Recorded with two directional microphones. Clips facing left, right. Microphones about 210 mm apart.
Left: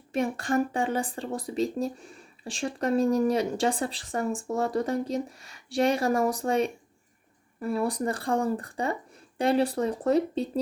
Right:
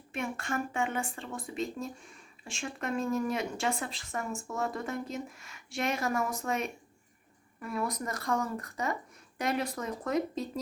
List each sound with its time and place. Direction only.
0.1 s speech: 35° left (ahead or behind)